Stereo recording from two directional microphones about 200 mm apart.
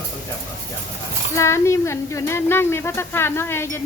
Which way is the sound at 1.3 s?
15° left (ahead or behind).